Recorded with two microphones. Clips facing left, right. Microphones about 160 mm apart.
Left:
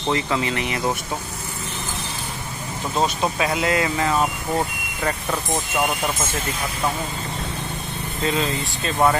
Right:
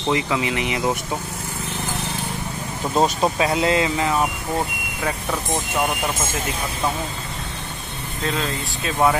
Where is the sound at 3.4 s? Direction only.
30° right (ahead or behind).